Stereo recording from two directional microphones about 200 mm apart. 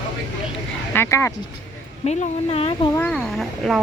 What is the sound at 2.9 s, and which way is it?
Speech, 5° left (ahead or behind).